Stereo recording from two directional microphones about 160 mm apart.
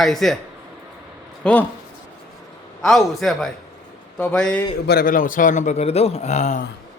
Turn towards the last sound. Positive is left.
turn(degrees=45)  # may be behind; listen again after turning